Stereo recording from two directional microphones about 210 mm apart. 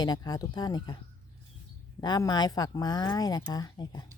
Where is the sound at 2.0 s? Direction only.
20° left (ahead or behind).